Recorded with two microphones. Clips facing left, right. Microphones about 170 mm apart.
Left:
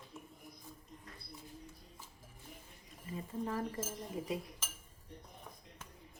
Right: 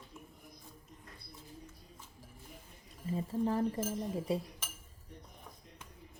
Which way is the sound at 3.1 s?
30° right (ahead or behind).